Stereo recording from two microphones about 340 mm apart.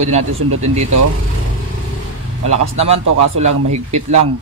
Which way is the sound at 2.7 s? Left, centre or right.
Centre.